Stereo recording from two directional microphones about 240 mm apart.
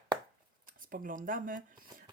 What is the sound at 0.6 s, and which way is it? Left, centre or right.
Speech, right.